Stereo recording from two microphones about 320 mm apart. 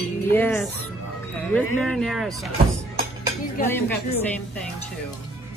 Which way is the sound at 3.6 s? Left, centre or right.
Centre.